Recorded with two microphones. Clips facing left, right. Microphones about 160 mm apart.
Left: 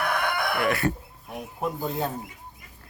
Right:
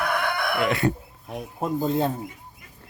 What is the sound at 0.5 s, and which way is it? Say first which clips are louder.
Speech: right 4 dB; 20° right (ahead or behind).